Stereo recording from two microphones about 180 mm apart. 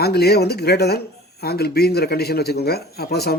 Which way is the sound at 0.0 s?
60° left (ahead or behind).